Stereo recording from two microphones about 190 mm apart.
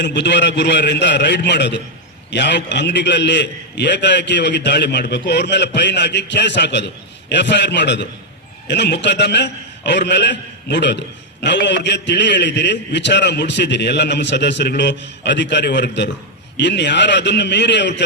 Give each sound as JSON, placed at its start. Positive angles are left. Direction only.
{"t": 0.0, "sound": "a man's voice", "side_deg": 65}